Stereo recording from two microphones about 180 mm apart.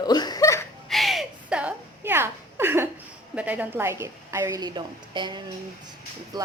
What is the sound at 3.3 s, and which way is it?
Speech, 10° right (ahead or behind).